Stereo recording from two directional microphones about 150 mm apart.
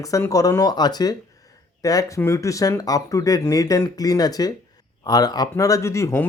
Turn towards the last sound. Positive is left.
turn(degrees=20)  # may be behind; listen again after turning